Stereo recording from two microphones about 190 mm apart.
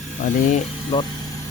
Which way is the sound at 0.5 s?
30° left (ahead or behind).